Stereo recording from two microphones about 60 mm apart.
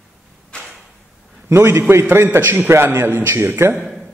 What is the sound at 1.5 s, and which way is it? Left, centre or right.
A man's voice, right.